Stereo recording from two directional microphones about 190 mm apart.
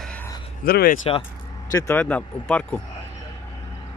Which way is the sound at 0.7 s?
50° left (ahead or behind).